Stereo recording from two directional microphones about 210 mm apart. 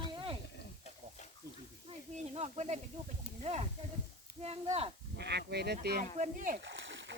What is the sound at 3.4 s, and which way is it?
Speech, 30° right (ahead or behind).